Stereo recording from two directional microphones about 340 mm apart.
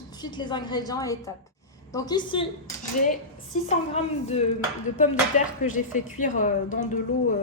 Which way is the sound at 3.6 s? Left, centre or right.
Centre.